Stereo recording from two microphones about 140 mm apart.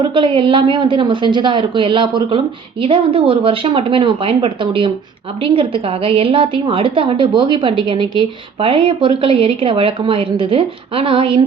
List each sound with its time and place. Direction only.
0.0 s a woman's voice: 35° right (ahead or behind)